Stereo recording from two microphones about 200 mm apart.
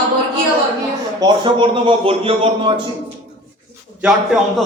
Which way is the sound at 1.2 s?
25° right (ahead or behind).